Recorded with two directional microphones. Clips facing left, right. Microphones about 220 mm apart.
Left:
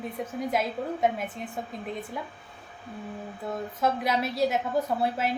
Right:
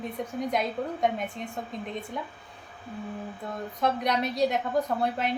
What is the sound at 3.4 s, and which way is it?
A woman's voice, 5° left (ahead or behind).